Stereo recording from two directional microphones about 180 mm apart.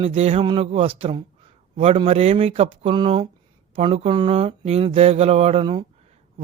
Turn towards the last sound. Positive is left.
turn(degrees=-25)  # may be behind; listen again after turning